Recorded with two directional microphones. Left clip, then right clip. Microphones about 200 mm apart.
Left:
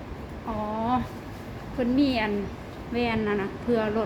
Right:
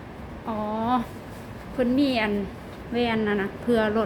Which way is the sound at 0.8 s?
15° right (ahead or behind).